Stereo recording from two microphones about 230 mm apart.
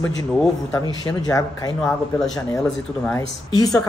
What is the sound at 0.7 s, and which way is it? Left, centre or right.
Speech, centre.